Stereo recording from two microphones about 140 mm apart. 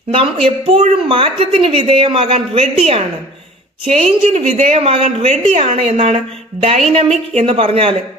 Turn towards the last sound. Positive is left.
turn(degrees=-40)  # may be behind; listen again after turning